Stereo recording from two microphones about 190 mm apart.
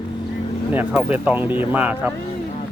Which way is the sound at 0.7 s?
10° right (ahead or behind).